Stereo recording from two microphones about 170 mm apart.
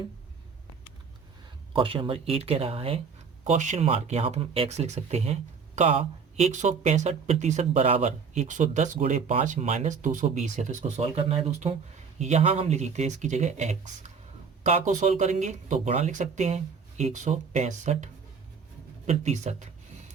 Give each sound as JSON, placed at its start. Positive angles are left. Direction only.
{"t": 1.7, "sound": "speech", "side_deg": -30}